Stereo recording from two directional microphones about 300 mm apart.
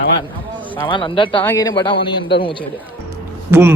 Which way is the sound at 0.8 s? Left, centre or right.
Centre.